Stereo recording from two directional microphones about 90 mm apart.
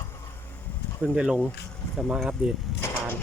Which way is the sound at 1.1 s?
10° right (ahead or behind).